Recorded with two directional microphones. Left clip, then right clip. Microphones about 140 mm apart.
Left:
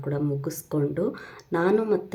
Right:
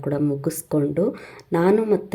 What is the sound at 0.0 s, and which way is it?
Speech, 30° right (ahead or behind).